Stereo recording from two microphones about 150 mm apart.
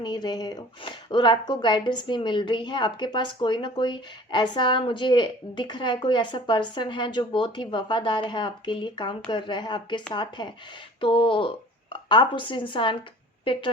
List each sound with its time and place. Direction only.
0.0 s a woman's voice: 25° left (ahead or behind)